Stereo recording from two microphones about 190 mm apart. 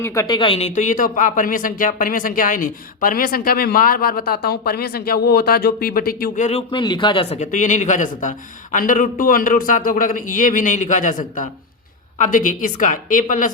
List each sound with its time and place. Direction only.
0.0 s speech: 15° left (ahead or behind); by 6.4 s 50° left (ahead or behind)
6.4 s speech: 30° left (ahead or behind)